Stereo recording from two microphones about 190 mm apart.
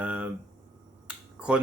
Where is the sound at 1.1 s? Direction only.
5° right (ahead or behind).